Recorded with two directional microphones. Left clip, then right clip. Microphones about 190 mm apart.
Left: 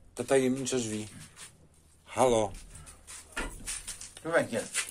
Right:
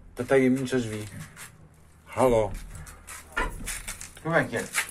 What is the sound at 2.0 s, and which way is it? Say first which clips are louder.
Speech: right 3 dB; 25° left (ahead or behind).